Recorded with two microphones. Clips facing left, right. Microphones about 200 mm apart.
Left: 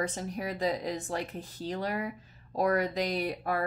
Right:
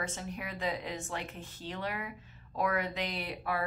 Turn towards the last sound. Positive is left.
turn(degrees=45)  # may be behind; listen again after turning